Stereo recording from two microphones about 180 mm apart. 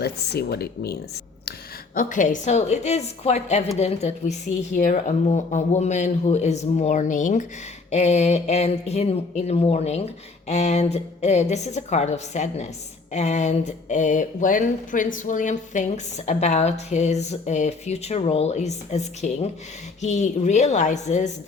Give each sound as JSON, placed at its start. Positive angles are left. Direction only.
{"t": 0.0, "sound": "speech", "side_deg": 60}
{"t": 2.0, "sound": "speech", "side_deg": 45}